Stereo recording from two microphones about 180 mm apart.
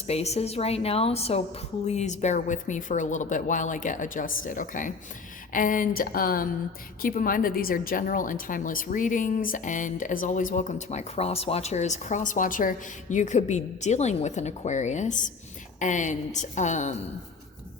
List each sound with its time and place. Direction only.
0.1 s a woman's voice: 35° left (ahead or behind)